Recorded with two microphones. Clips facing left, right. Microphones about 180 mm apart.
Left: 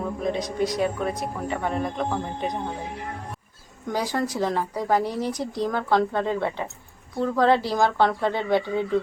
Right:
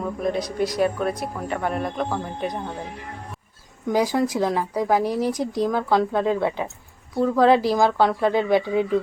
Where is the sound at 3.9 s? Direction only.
10° right (ahead or behind).